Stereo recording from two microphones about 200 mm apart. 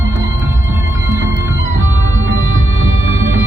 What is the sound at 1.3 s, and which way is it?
Music, 70° right (ahead or behind).